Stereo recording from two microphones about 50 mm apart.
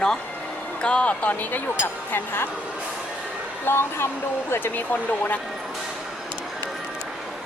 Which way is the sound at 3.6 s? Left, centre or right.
Left.